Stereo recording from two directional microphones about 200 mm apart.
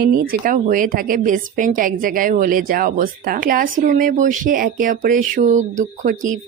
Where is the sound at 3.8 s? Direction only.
40° right (ahead or behind).